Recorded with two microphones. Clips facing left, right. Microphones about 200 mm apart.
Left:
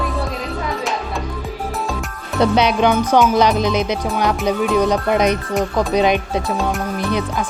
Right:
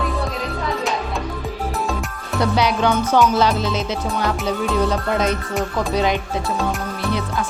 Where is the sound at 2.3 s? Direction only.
20° left (ahead or behind).